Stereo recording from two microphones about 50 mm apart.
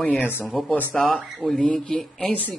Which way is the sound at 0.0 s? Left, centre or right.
Left.